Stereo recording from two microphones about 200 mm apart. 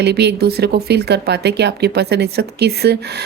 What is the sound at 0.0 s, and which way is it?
Speech, 55° right (ahead or behind).